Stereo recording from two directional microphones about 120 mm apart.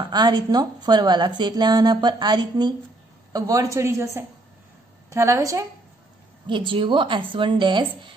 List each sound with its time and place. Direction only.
0.1 s a woman's voice: 35° right (ahead or behind)
6.4 s a woman's voice: 45° right (ahead or behind)